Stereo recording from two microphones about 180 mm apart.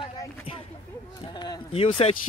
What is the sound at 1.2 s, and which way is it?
Speech, 25° left (ahead or behind).